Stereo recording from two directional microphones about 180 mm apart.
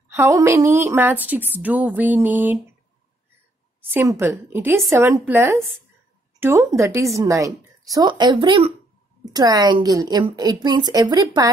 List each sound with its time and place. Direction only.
0.1 s a woman's voice: 15° right (ahead or behind)
3.9 s a woman's voice: 10° right (ahead or behind)